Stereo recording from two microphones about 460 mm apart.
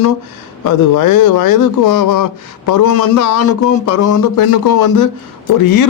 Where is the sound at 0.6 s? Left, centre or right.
Left.